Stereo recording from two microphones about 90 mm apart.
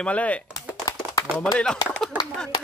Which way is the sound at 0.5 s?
45° left (ahead or behind).